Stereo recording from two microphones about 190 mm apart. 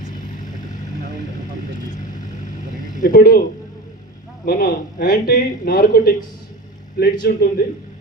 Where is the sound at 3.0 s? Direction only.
50° left (ahead or behind).